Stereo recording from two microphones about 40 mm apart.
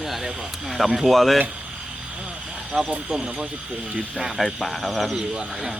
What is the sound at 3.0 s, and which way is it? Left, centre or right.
Speech, centre.